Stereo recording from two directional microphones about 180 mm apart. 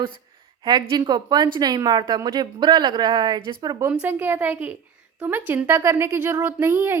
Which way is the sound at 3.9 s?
10° right (ahead or behind).